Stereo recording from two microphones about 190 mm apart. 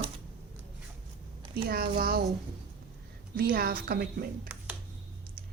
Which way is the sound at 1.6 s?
55° right (ahead or behind).